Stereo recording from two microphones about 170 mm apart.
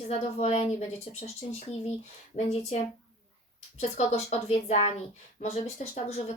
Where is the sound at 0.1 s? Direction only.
40° left (ahead or behind).